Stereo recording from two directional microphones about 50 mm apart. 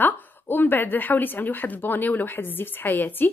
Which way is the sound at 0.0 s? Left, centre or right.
Left.